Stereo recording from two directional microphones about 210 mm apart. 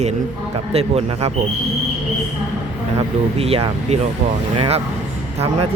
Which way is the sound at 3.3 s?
30° right (ahead or behind).